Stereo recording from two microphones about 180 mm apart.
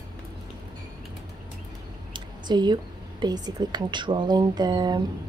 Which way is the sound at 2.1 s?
25° right (ahead or behind).